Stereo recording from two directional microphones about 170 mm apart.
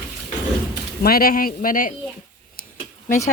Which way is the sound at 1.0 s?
60° left (ahead or behind).